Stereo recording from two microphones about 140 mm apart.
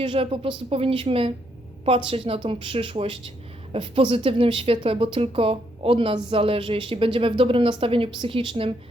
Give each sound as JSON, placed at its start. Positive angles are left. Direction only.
{"t": 0.0, "sound": "speech", "side_deg": -40}